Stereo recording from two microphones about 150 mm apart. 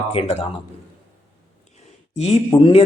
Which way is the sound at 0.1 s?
40° left (ahead or behind).